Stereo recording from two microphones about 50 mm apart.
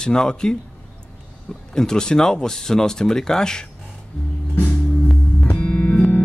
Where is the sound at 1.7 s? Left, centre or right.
Centre.